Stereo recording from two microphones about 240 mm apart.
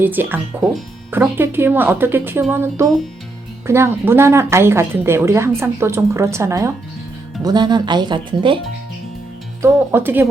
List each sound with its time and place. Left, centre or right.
0.0 s speech: centre
9.6 s speech: centre